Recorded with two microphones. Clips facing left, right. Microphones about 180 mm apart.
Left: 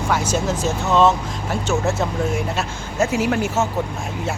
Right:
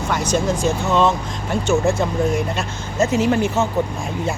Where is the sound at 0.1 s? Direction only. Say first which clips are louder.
Right 2 dB; 5° left (ahead or behind).